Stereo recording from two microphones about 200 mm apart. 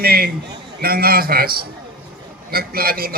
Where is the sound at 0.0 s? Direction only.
50° right (ahead or behind).